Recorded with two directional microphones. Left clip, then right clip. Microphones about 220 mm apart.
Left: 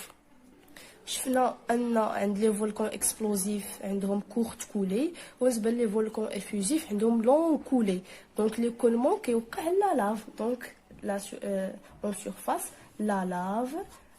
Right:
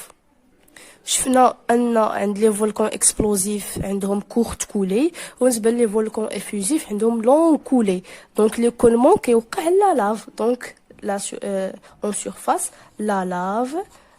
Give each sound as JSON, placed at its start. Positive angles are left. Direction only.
{"t": 1.0, "sound": "a woman's voice", "side_deg": -40}